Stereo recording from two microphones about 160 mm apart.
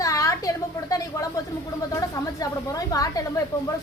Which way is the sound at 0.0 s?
20° left (ahead or behind).